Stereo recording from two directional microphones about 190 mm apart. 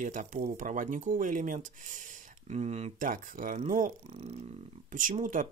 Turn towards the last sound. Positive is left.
turn(degrees=-45)  # may be behind; listen again after turning